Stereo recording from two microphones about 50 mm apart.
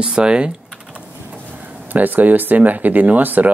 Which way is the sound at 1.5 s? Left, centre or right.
Right.